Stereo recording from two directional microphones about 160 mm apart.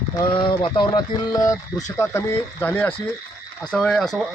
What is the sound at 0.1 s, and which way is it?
Speech, 30° left (ahead or behind).